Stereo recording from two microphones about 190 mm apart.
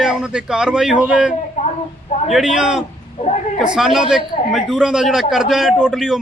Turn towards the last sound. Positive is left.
turn(degrees=0)  # may be behind; listen again after turning